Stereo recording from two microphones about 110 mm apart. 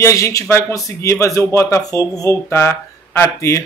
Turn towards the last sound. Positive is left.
turn(degrees=25)  # may be behind; listen again after turning